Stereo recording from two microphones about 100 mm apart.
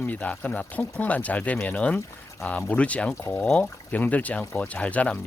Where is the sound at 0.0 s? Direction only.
15° left (ahead or behind).